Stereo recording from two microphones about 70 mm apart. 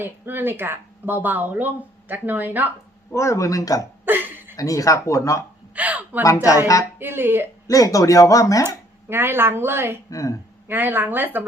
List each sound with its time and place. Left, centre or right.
0.0 s speech: right
3.1 s speech: left
4.0 s hiccup: right
4.5 s speech: left
5.7 s speech: right
7.7 s speech: left
8.6 s speech: right
10.1 s speech: left
10.7 s speech: right